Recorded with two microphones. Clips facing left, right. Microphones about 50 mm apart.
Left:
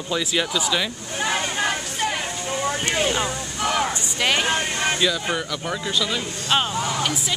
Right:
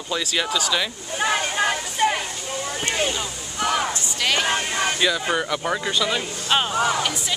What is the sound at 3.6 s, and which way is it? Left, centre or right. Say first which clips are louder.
Speech: right 1 dB; centre.